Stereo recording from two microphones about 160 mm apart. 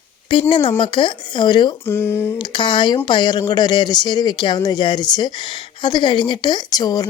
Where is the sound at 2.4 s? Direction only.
30° left (ahead or behind).